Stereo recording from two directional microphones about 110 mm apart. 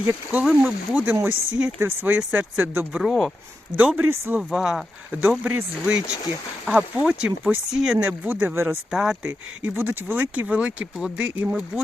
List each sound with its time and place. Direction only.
0.1 s speech: 15° right (ahead or behind)
3.0 s speech: centre (ahead or behind)
3.8 s speech: 15° right (ahead or behind)
8.9 s speech: 5° right (ahead or behind)